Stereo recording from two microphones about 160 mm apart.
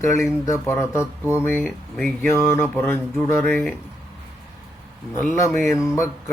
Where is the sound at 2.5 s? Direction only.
15° left (ahead or behind).